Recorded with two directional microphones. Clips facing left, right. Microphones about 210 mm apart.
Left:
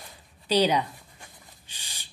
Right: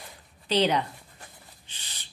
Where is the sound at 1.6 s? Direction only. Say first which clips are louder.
Left 1 dB; 10° left (ahead or behind).